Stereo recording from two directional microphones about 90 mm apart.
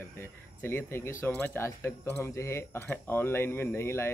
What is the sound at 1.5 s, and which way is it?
Speech, 30° left (ahead or behind).